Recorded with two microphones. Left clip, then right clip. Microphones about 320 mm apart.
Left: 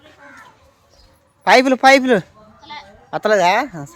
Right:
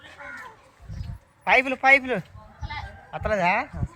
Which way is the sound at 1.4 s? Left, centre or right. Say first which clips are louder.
Left 8 dB; centre.